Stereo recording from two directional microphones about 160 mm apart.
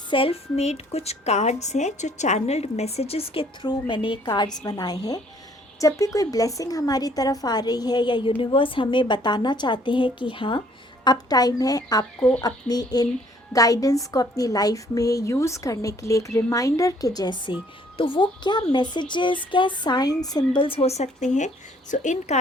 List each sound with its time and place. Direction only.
0.1 s a woman's voice: 35° left (ahead or behind)